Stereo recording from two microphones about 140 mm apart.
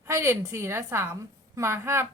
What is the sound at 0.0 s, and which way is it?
A woman's voice, 20° right (ahead or behind).